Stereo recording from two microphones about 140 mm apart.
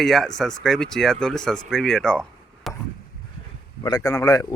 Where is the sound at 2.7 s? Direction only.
Centre (ahead or behind).